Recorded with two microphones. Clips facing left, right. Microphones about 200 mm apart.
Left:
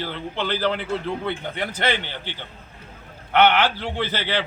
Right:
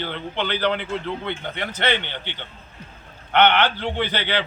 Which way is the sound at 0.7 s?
40° left (ahead or behind).